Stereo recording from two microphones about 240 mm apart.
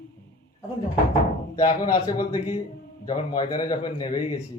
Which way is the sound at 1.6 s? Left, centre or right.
Centre.